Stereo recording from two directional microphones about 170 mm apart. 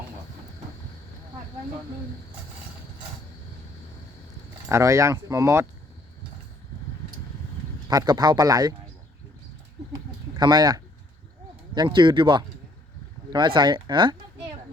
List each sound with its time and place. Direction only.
4.7 s speech: 20° right (ahead or behind)
7.9 s speech: 25° right (ahead or behind)
9.9 s a sound: 25° right (ahead or behind)
11.7 s speech: 25° right (ahead or behind)